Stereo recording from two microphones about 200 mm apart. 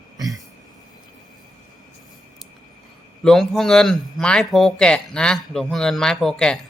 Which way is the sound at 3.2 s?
Centre (ahead or behind).